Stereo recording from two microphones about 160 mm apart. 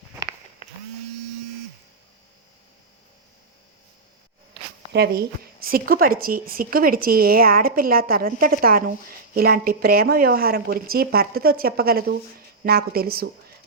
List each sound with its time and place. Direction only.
4.9 s a woman's voice: 80° right